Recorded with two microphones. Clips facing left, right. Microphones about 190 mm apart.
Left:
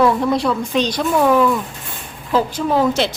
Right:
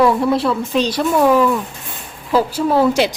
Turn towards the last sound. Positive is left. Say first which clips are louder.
# right 2 dB
turn(degrees=-10)  # may be behind; listen again after turning